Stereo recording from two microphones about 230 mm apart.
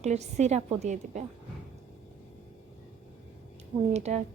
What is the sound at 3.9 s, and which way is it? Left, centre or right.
Speech, right.